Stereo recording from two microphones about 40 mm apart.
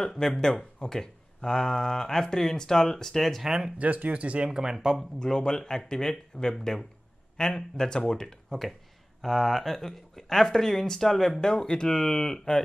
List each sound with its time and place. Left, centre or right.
0.3 s speech: centre
3.4 s speech: centre
3.7 s speech: right
4.5 s speech: centre
4.7 s speech: centre
5.2 s speech: centre
11.4 s speech: centre